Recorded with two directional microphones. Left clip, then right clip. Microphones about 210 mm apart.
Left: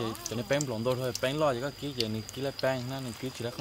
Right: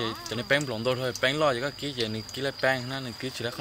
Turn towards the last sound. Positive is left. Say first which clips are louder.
# right 4 dB
turn(degrees=15)  # may be behind; listen again after turning